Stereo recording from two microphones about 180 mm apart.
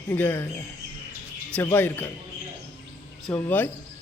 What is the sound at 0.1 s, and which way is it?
Speech, 10° left (ahead or behind).